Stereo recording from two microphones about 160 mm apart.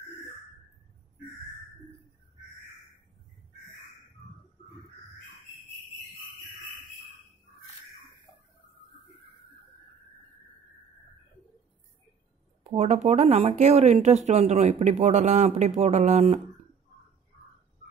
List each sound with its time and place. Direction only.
12.6 s speech: 45° right (ahead or behind)